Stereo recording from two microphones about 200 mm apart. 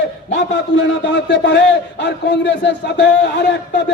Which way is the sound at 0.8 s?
60° left (ahead or behind).